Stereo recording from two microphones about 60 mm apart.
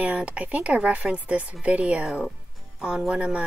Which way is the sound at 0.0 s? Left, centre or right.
Right.